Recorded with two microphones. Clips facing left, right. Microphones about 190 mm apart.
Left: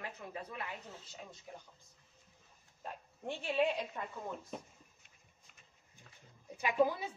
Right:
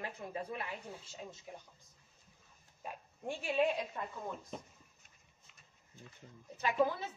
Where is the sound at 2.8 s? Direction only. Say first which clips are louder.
Right 1 dB; 10° right (ahead or behind).